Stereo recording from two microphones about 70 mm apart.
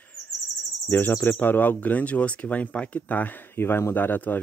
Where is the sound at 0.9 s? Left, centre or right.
Left.